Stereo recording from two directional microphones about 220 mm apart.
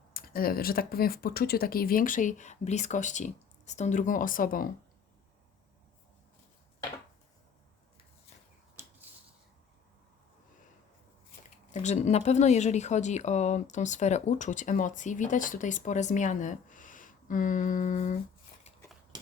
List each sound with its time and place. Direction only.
0.1 s speech: 40° left (ahead or behind)
11.7 s speech: 30° left (ahead or behind)